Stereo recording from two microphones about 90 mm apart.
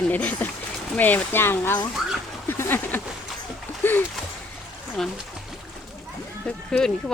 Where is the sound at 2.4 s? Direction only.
25° left (ahead or behind).